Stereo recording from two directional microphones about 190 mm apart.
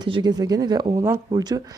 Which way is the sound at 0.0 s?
20° right (ahead or behind).